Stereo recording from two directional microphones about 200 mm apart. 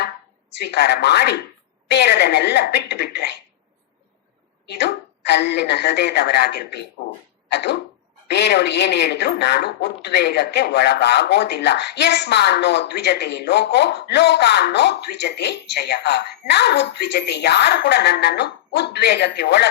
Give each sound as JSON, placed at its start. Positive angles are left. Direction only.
{"t": 0.6, "sound": "a woman's voice", "side_deg": 55}
{"t": 4.6, "sound": "a woman's voice", "side_deg": 60}
{"t": 7.4, "sound": "throat clearing", "side_deg": 55}
{"t": 8.3, "sound": "a woman's voice", "side_deg": 55}